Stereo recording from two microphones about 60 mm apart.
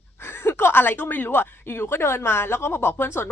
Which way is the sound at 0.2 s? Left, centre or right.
Left.